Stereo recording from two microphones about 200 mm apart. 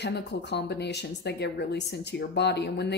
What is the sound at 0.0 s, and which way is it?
Speech, 55° left (ahead or behind).